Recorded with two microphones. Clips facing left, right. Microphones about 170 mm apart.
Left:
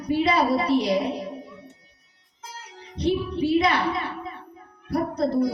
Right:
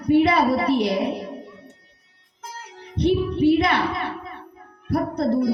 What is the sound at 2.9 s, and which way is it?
A man's voice, 60° right (ahead or behind).